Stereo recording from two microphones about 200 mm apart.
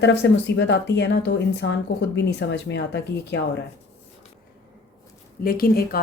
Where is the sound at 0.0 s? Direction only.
60° left (ahead or behind).